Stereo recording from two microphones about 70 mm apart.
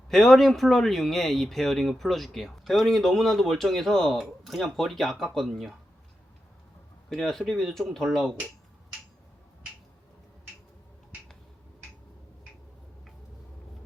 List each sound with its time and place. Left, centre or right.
0.1 s speech: centre
7.1 s speech: centre